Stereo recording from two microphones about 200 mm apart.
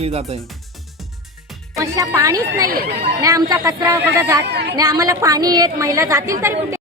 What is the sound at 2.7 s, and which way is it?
Speech, 50° right (ahead or behind).